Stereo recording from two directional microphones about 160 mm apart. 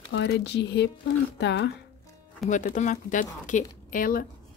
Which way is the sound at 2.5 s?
50° left (ahead or behind).